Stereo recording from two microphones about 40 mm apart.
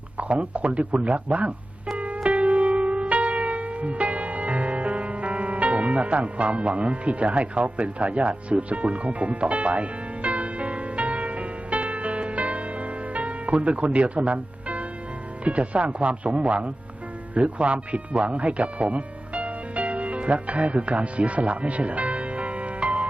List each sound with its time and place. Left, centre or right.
0.2 s speech: right
2.0 s music: right
15.4 s speech: right